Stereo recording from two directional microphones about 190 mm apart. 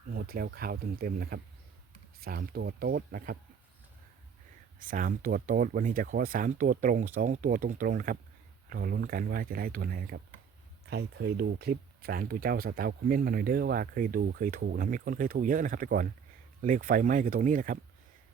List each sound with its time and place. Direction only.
0.1 s speech: 50° right (ahead or behind)
4.8 s speech: 45° right (ahead or behind)